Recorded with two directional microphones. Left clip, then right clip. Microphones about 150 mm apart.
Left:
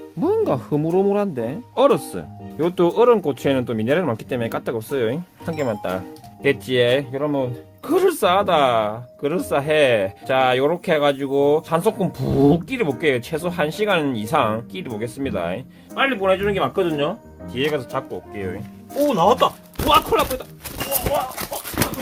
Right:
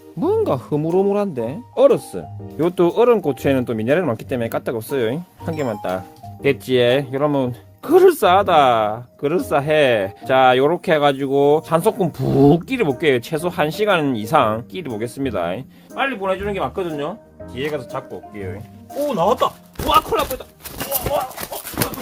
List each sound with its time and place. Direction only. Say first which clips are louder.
0.2 s speech: right 1 dB; 25° right (ahead or behind)
1.7 s speech: right 3 dB; 10° right (ahead or behind)
2.6 s speech: right 1 dB; 30° right (ahead or behind)
6.4 s speech: right 2 dB; 35° right (ahead or behind)
7.1 s speech: right 3 dB; 65° right (ahead or behind)
7.9 s speech: right 5 dB; 40° right (ahead or behind)
16.0 s speech: left 2 dB; 15° left (ahead or behind)
17.5 s speech: left 2 dB; 25° left (ahead or behind); by 20.2 s 5° right (ahead or behind)
20.7 s clip-clop: even; 35° right (ahead or behind)